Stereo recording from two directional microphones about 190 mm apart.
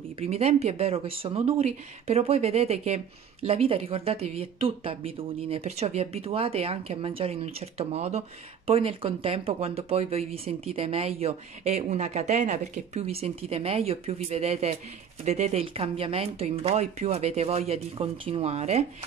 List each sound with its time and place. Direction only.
0.2 s speech: 35° right (ahead or behind)